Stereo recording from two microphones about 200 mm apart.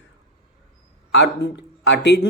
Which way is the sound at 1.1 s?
60° left (ahead or behind).